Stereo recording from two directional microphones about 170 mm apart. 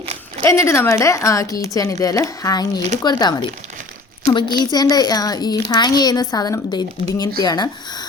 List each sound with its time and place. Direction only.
0.4 s a woman's voice: 15° left (ahead or behind)